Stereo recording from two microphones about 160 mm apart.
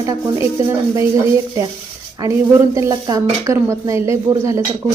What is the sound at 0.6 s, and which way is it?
Speech, 20° right (ahead or behind).